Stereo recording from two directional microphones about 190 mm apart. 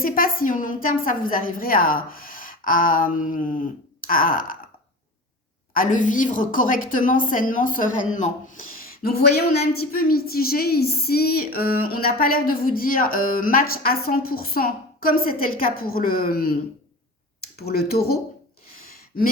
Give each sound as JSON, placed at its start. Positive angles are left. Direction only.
{"t": 0.0, "sound": "a woman's voice", "side_deg": 50}
{"t": 5.7, "sound": "a woman's voice", "side_deg": 45}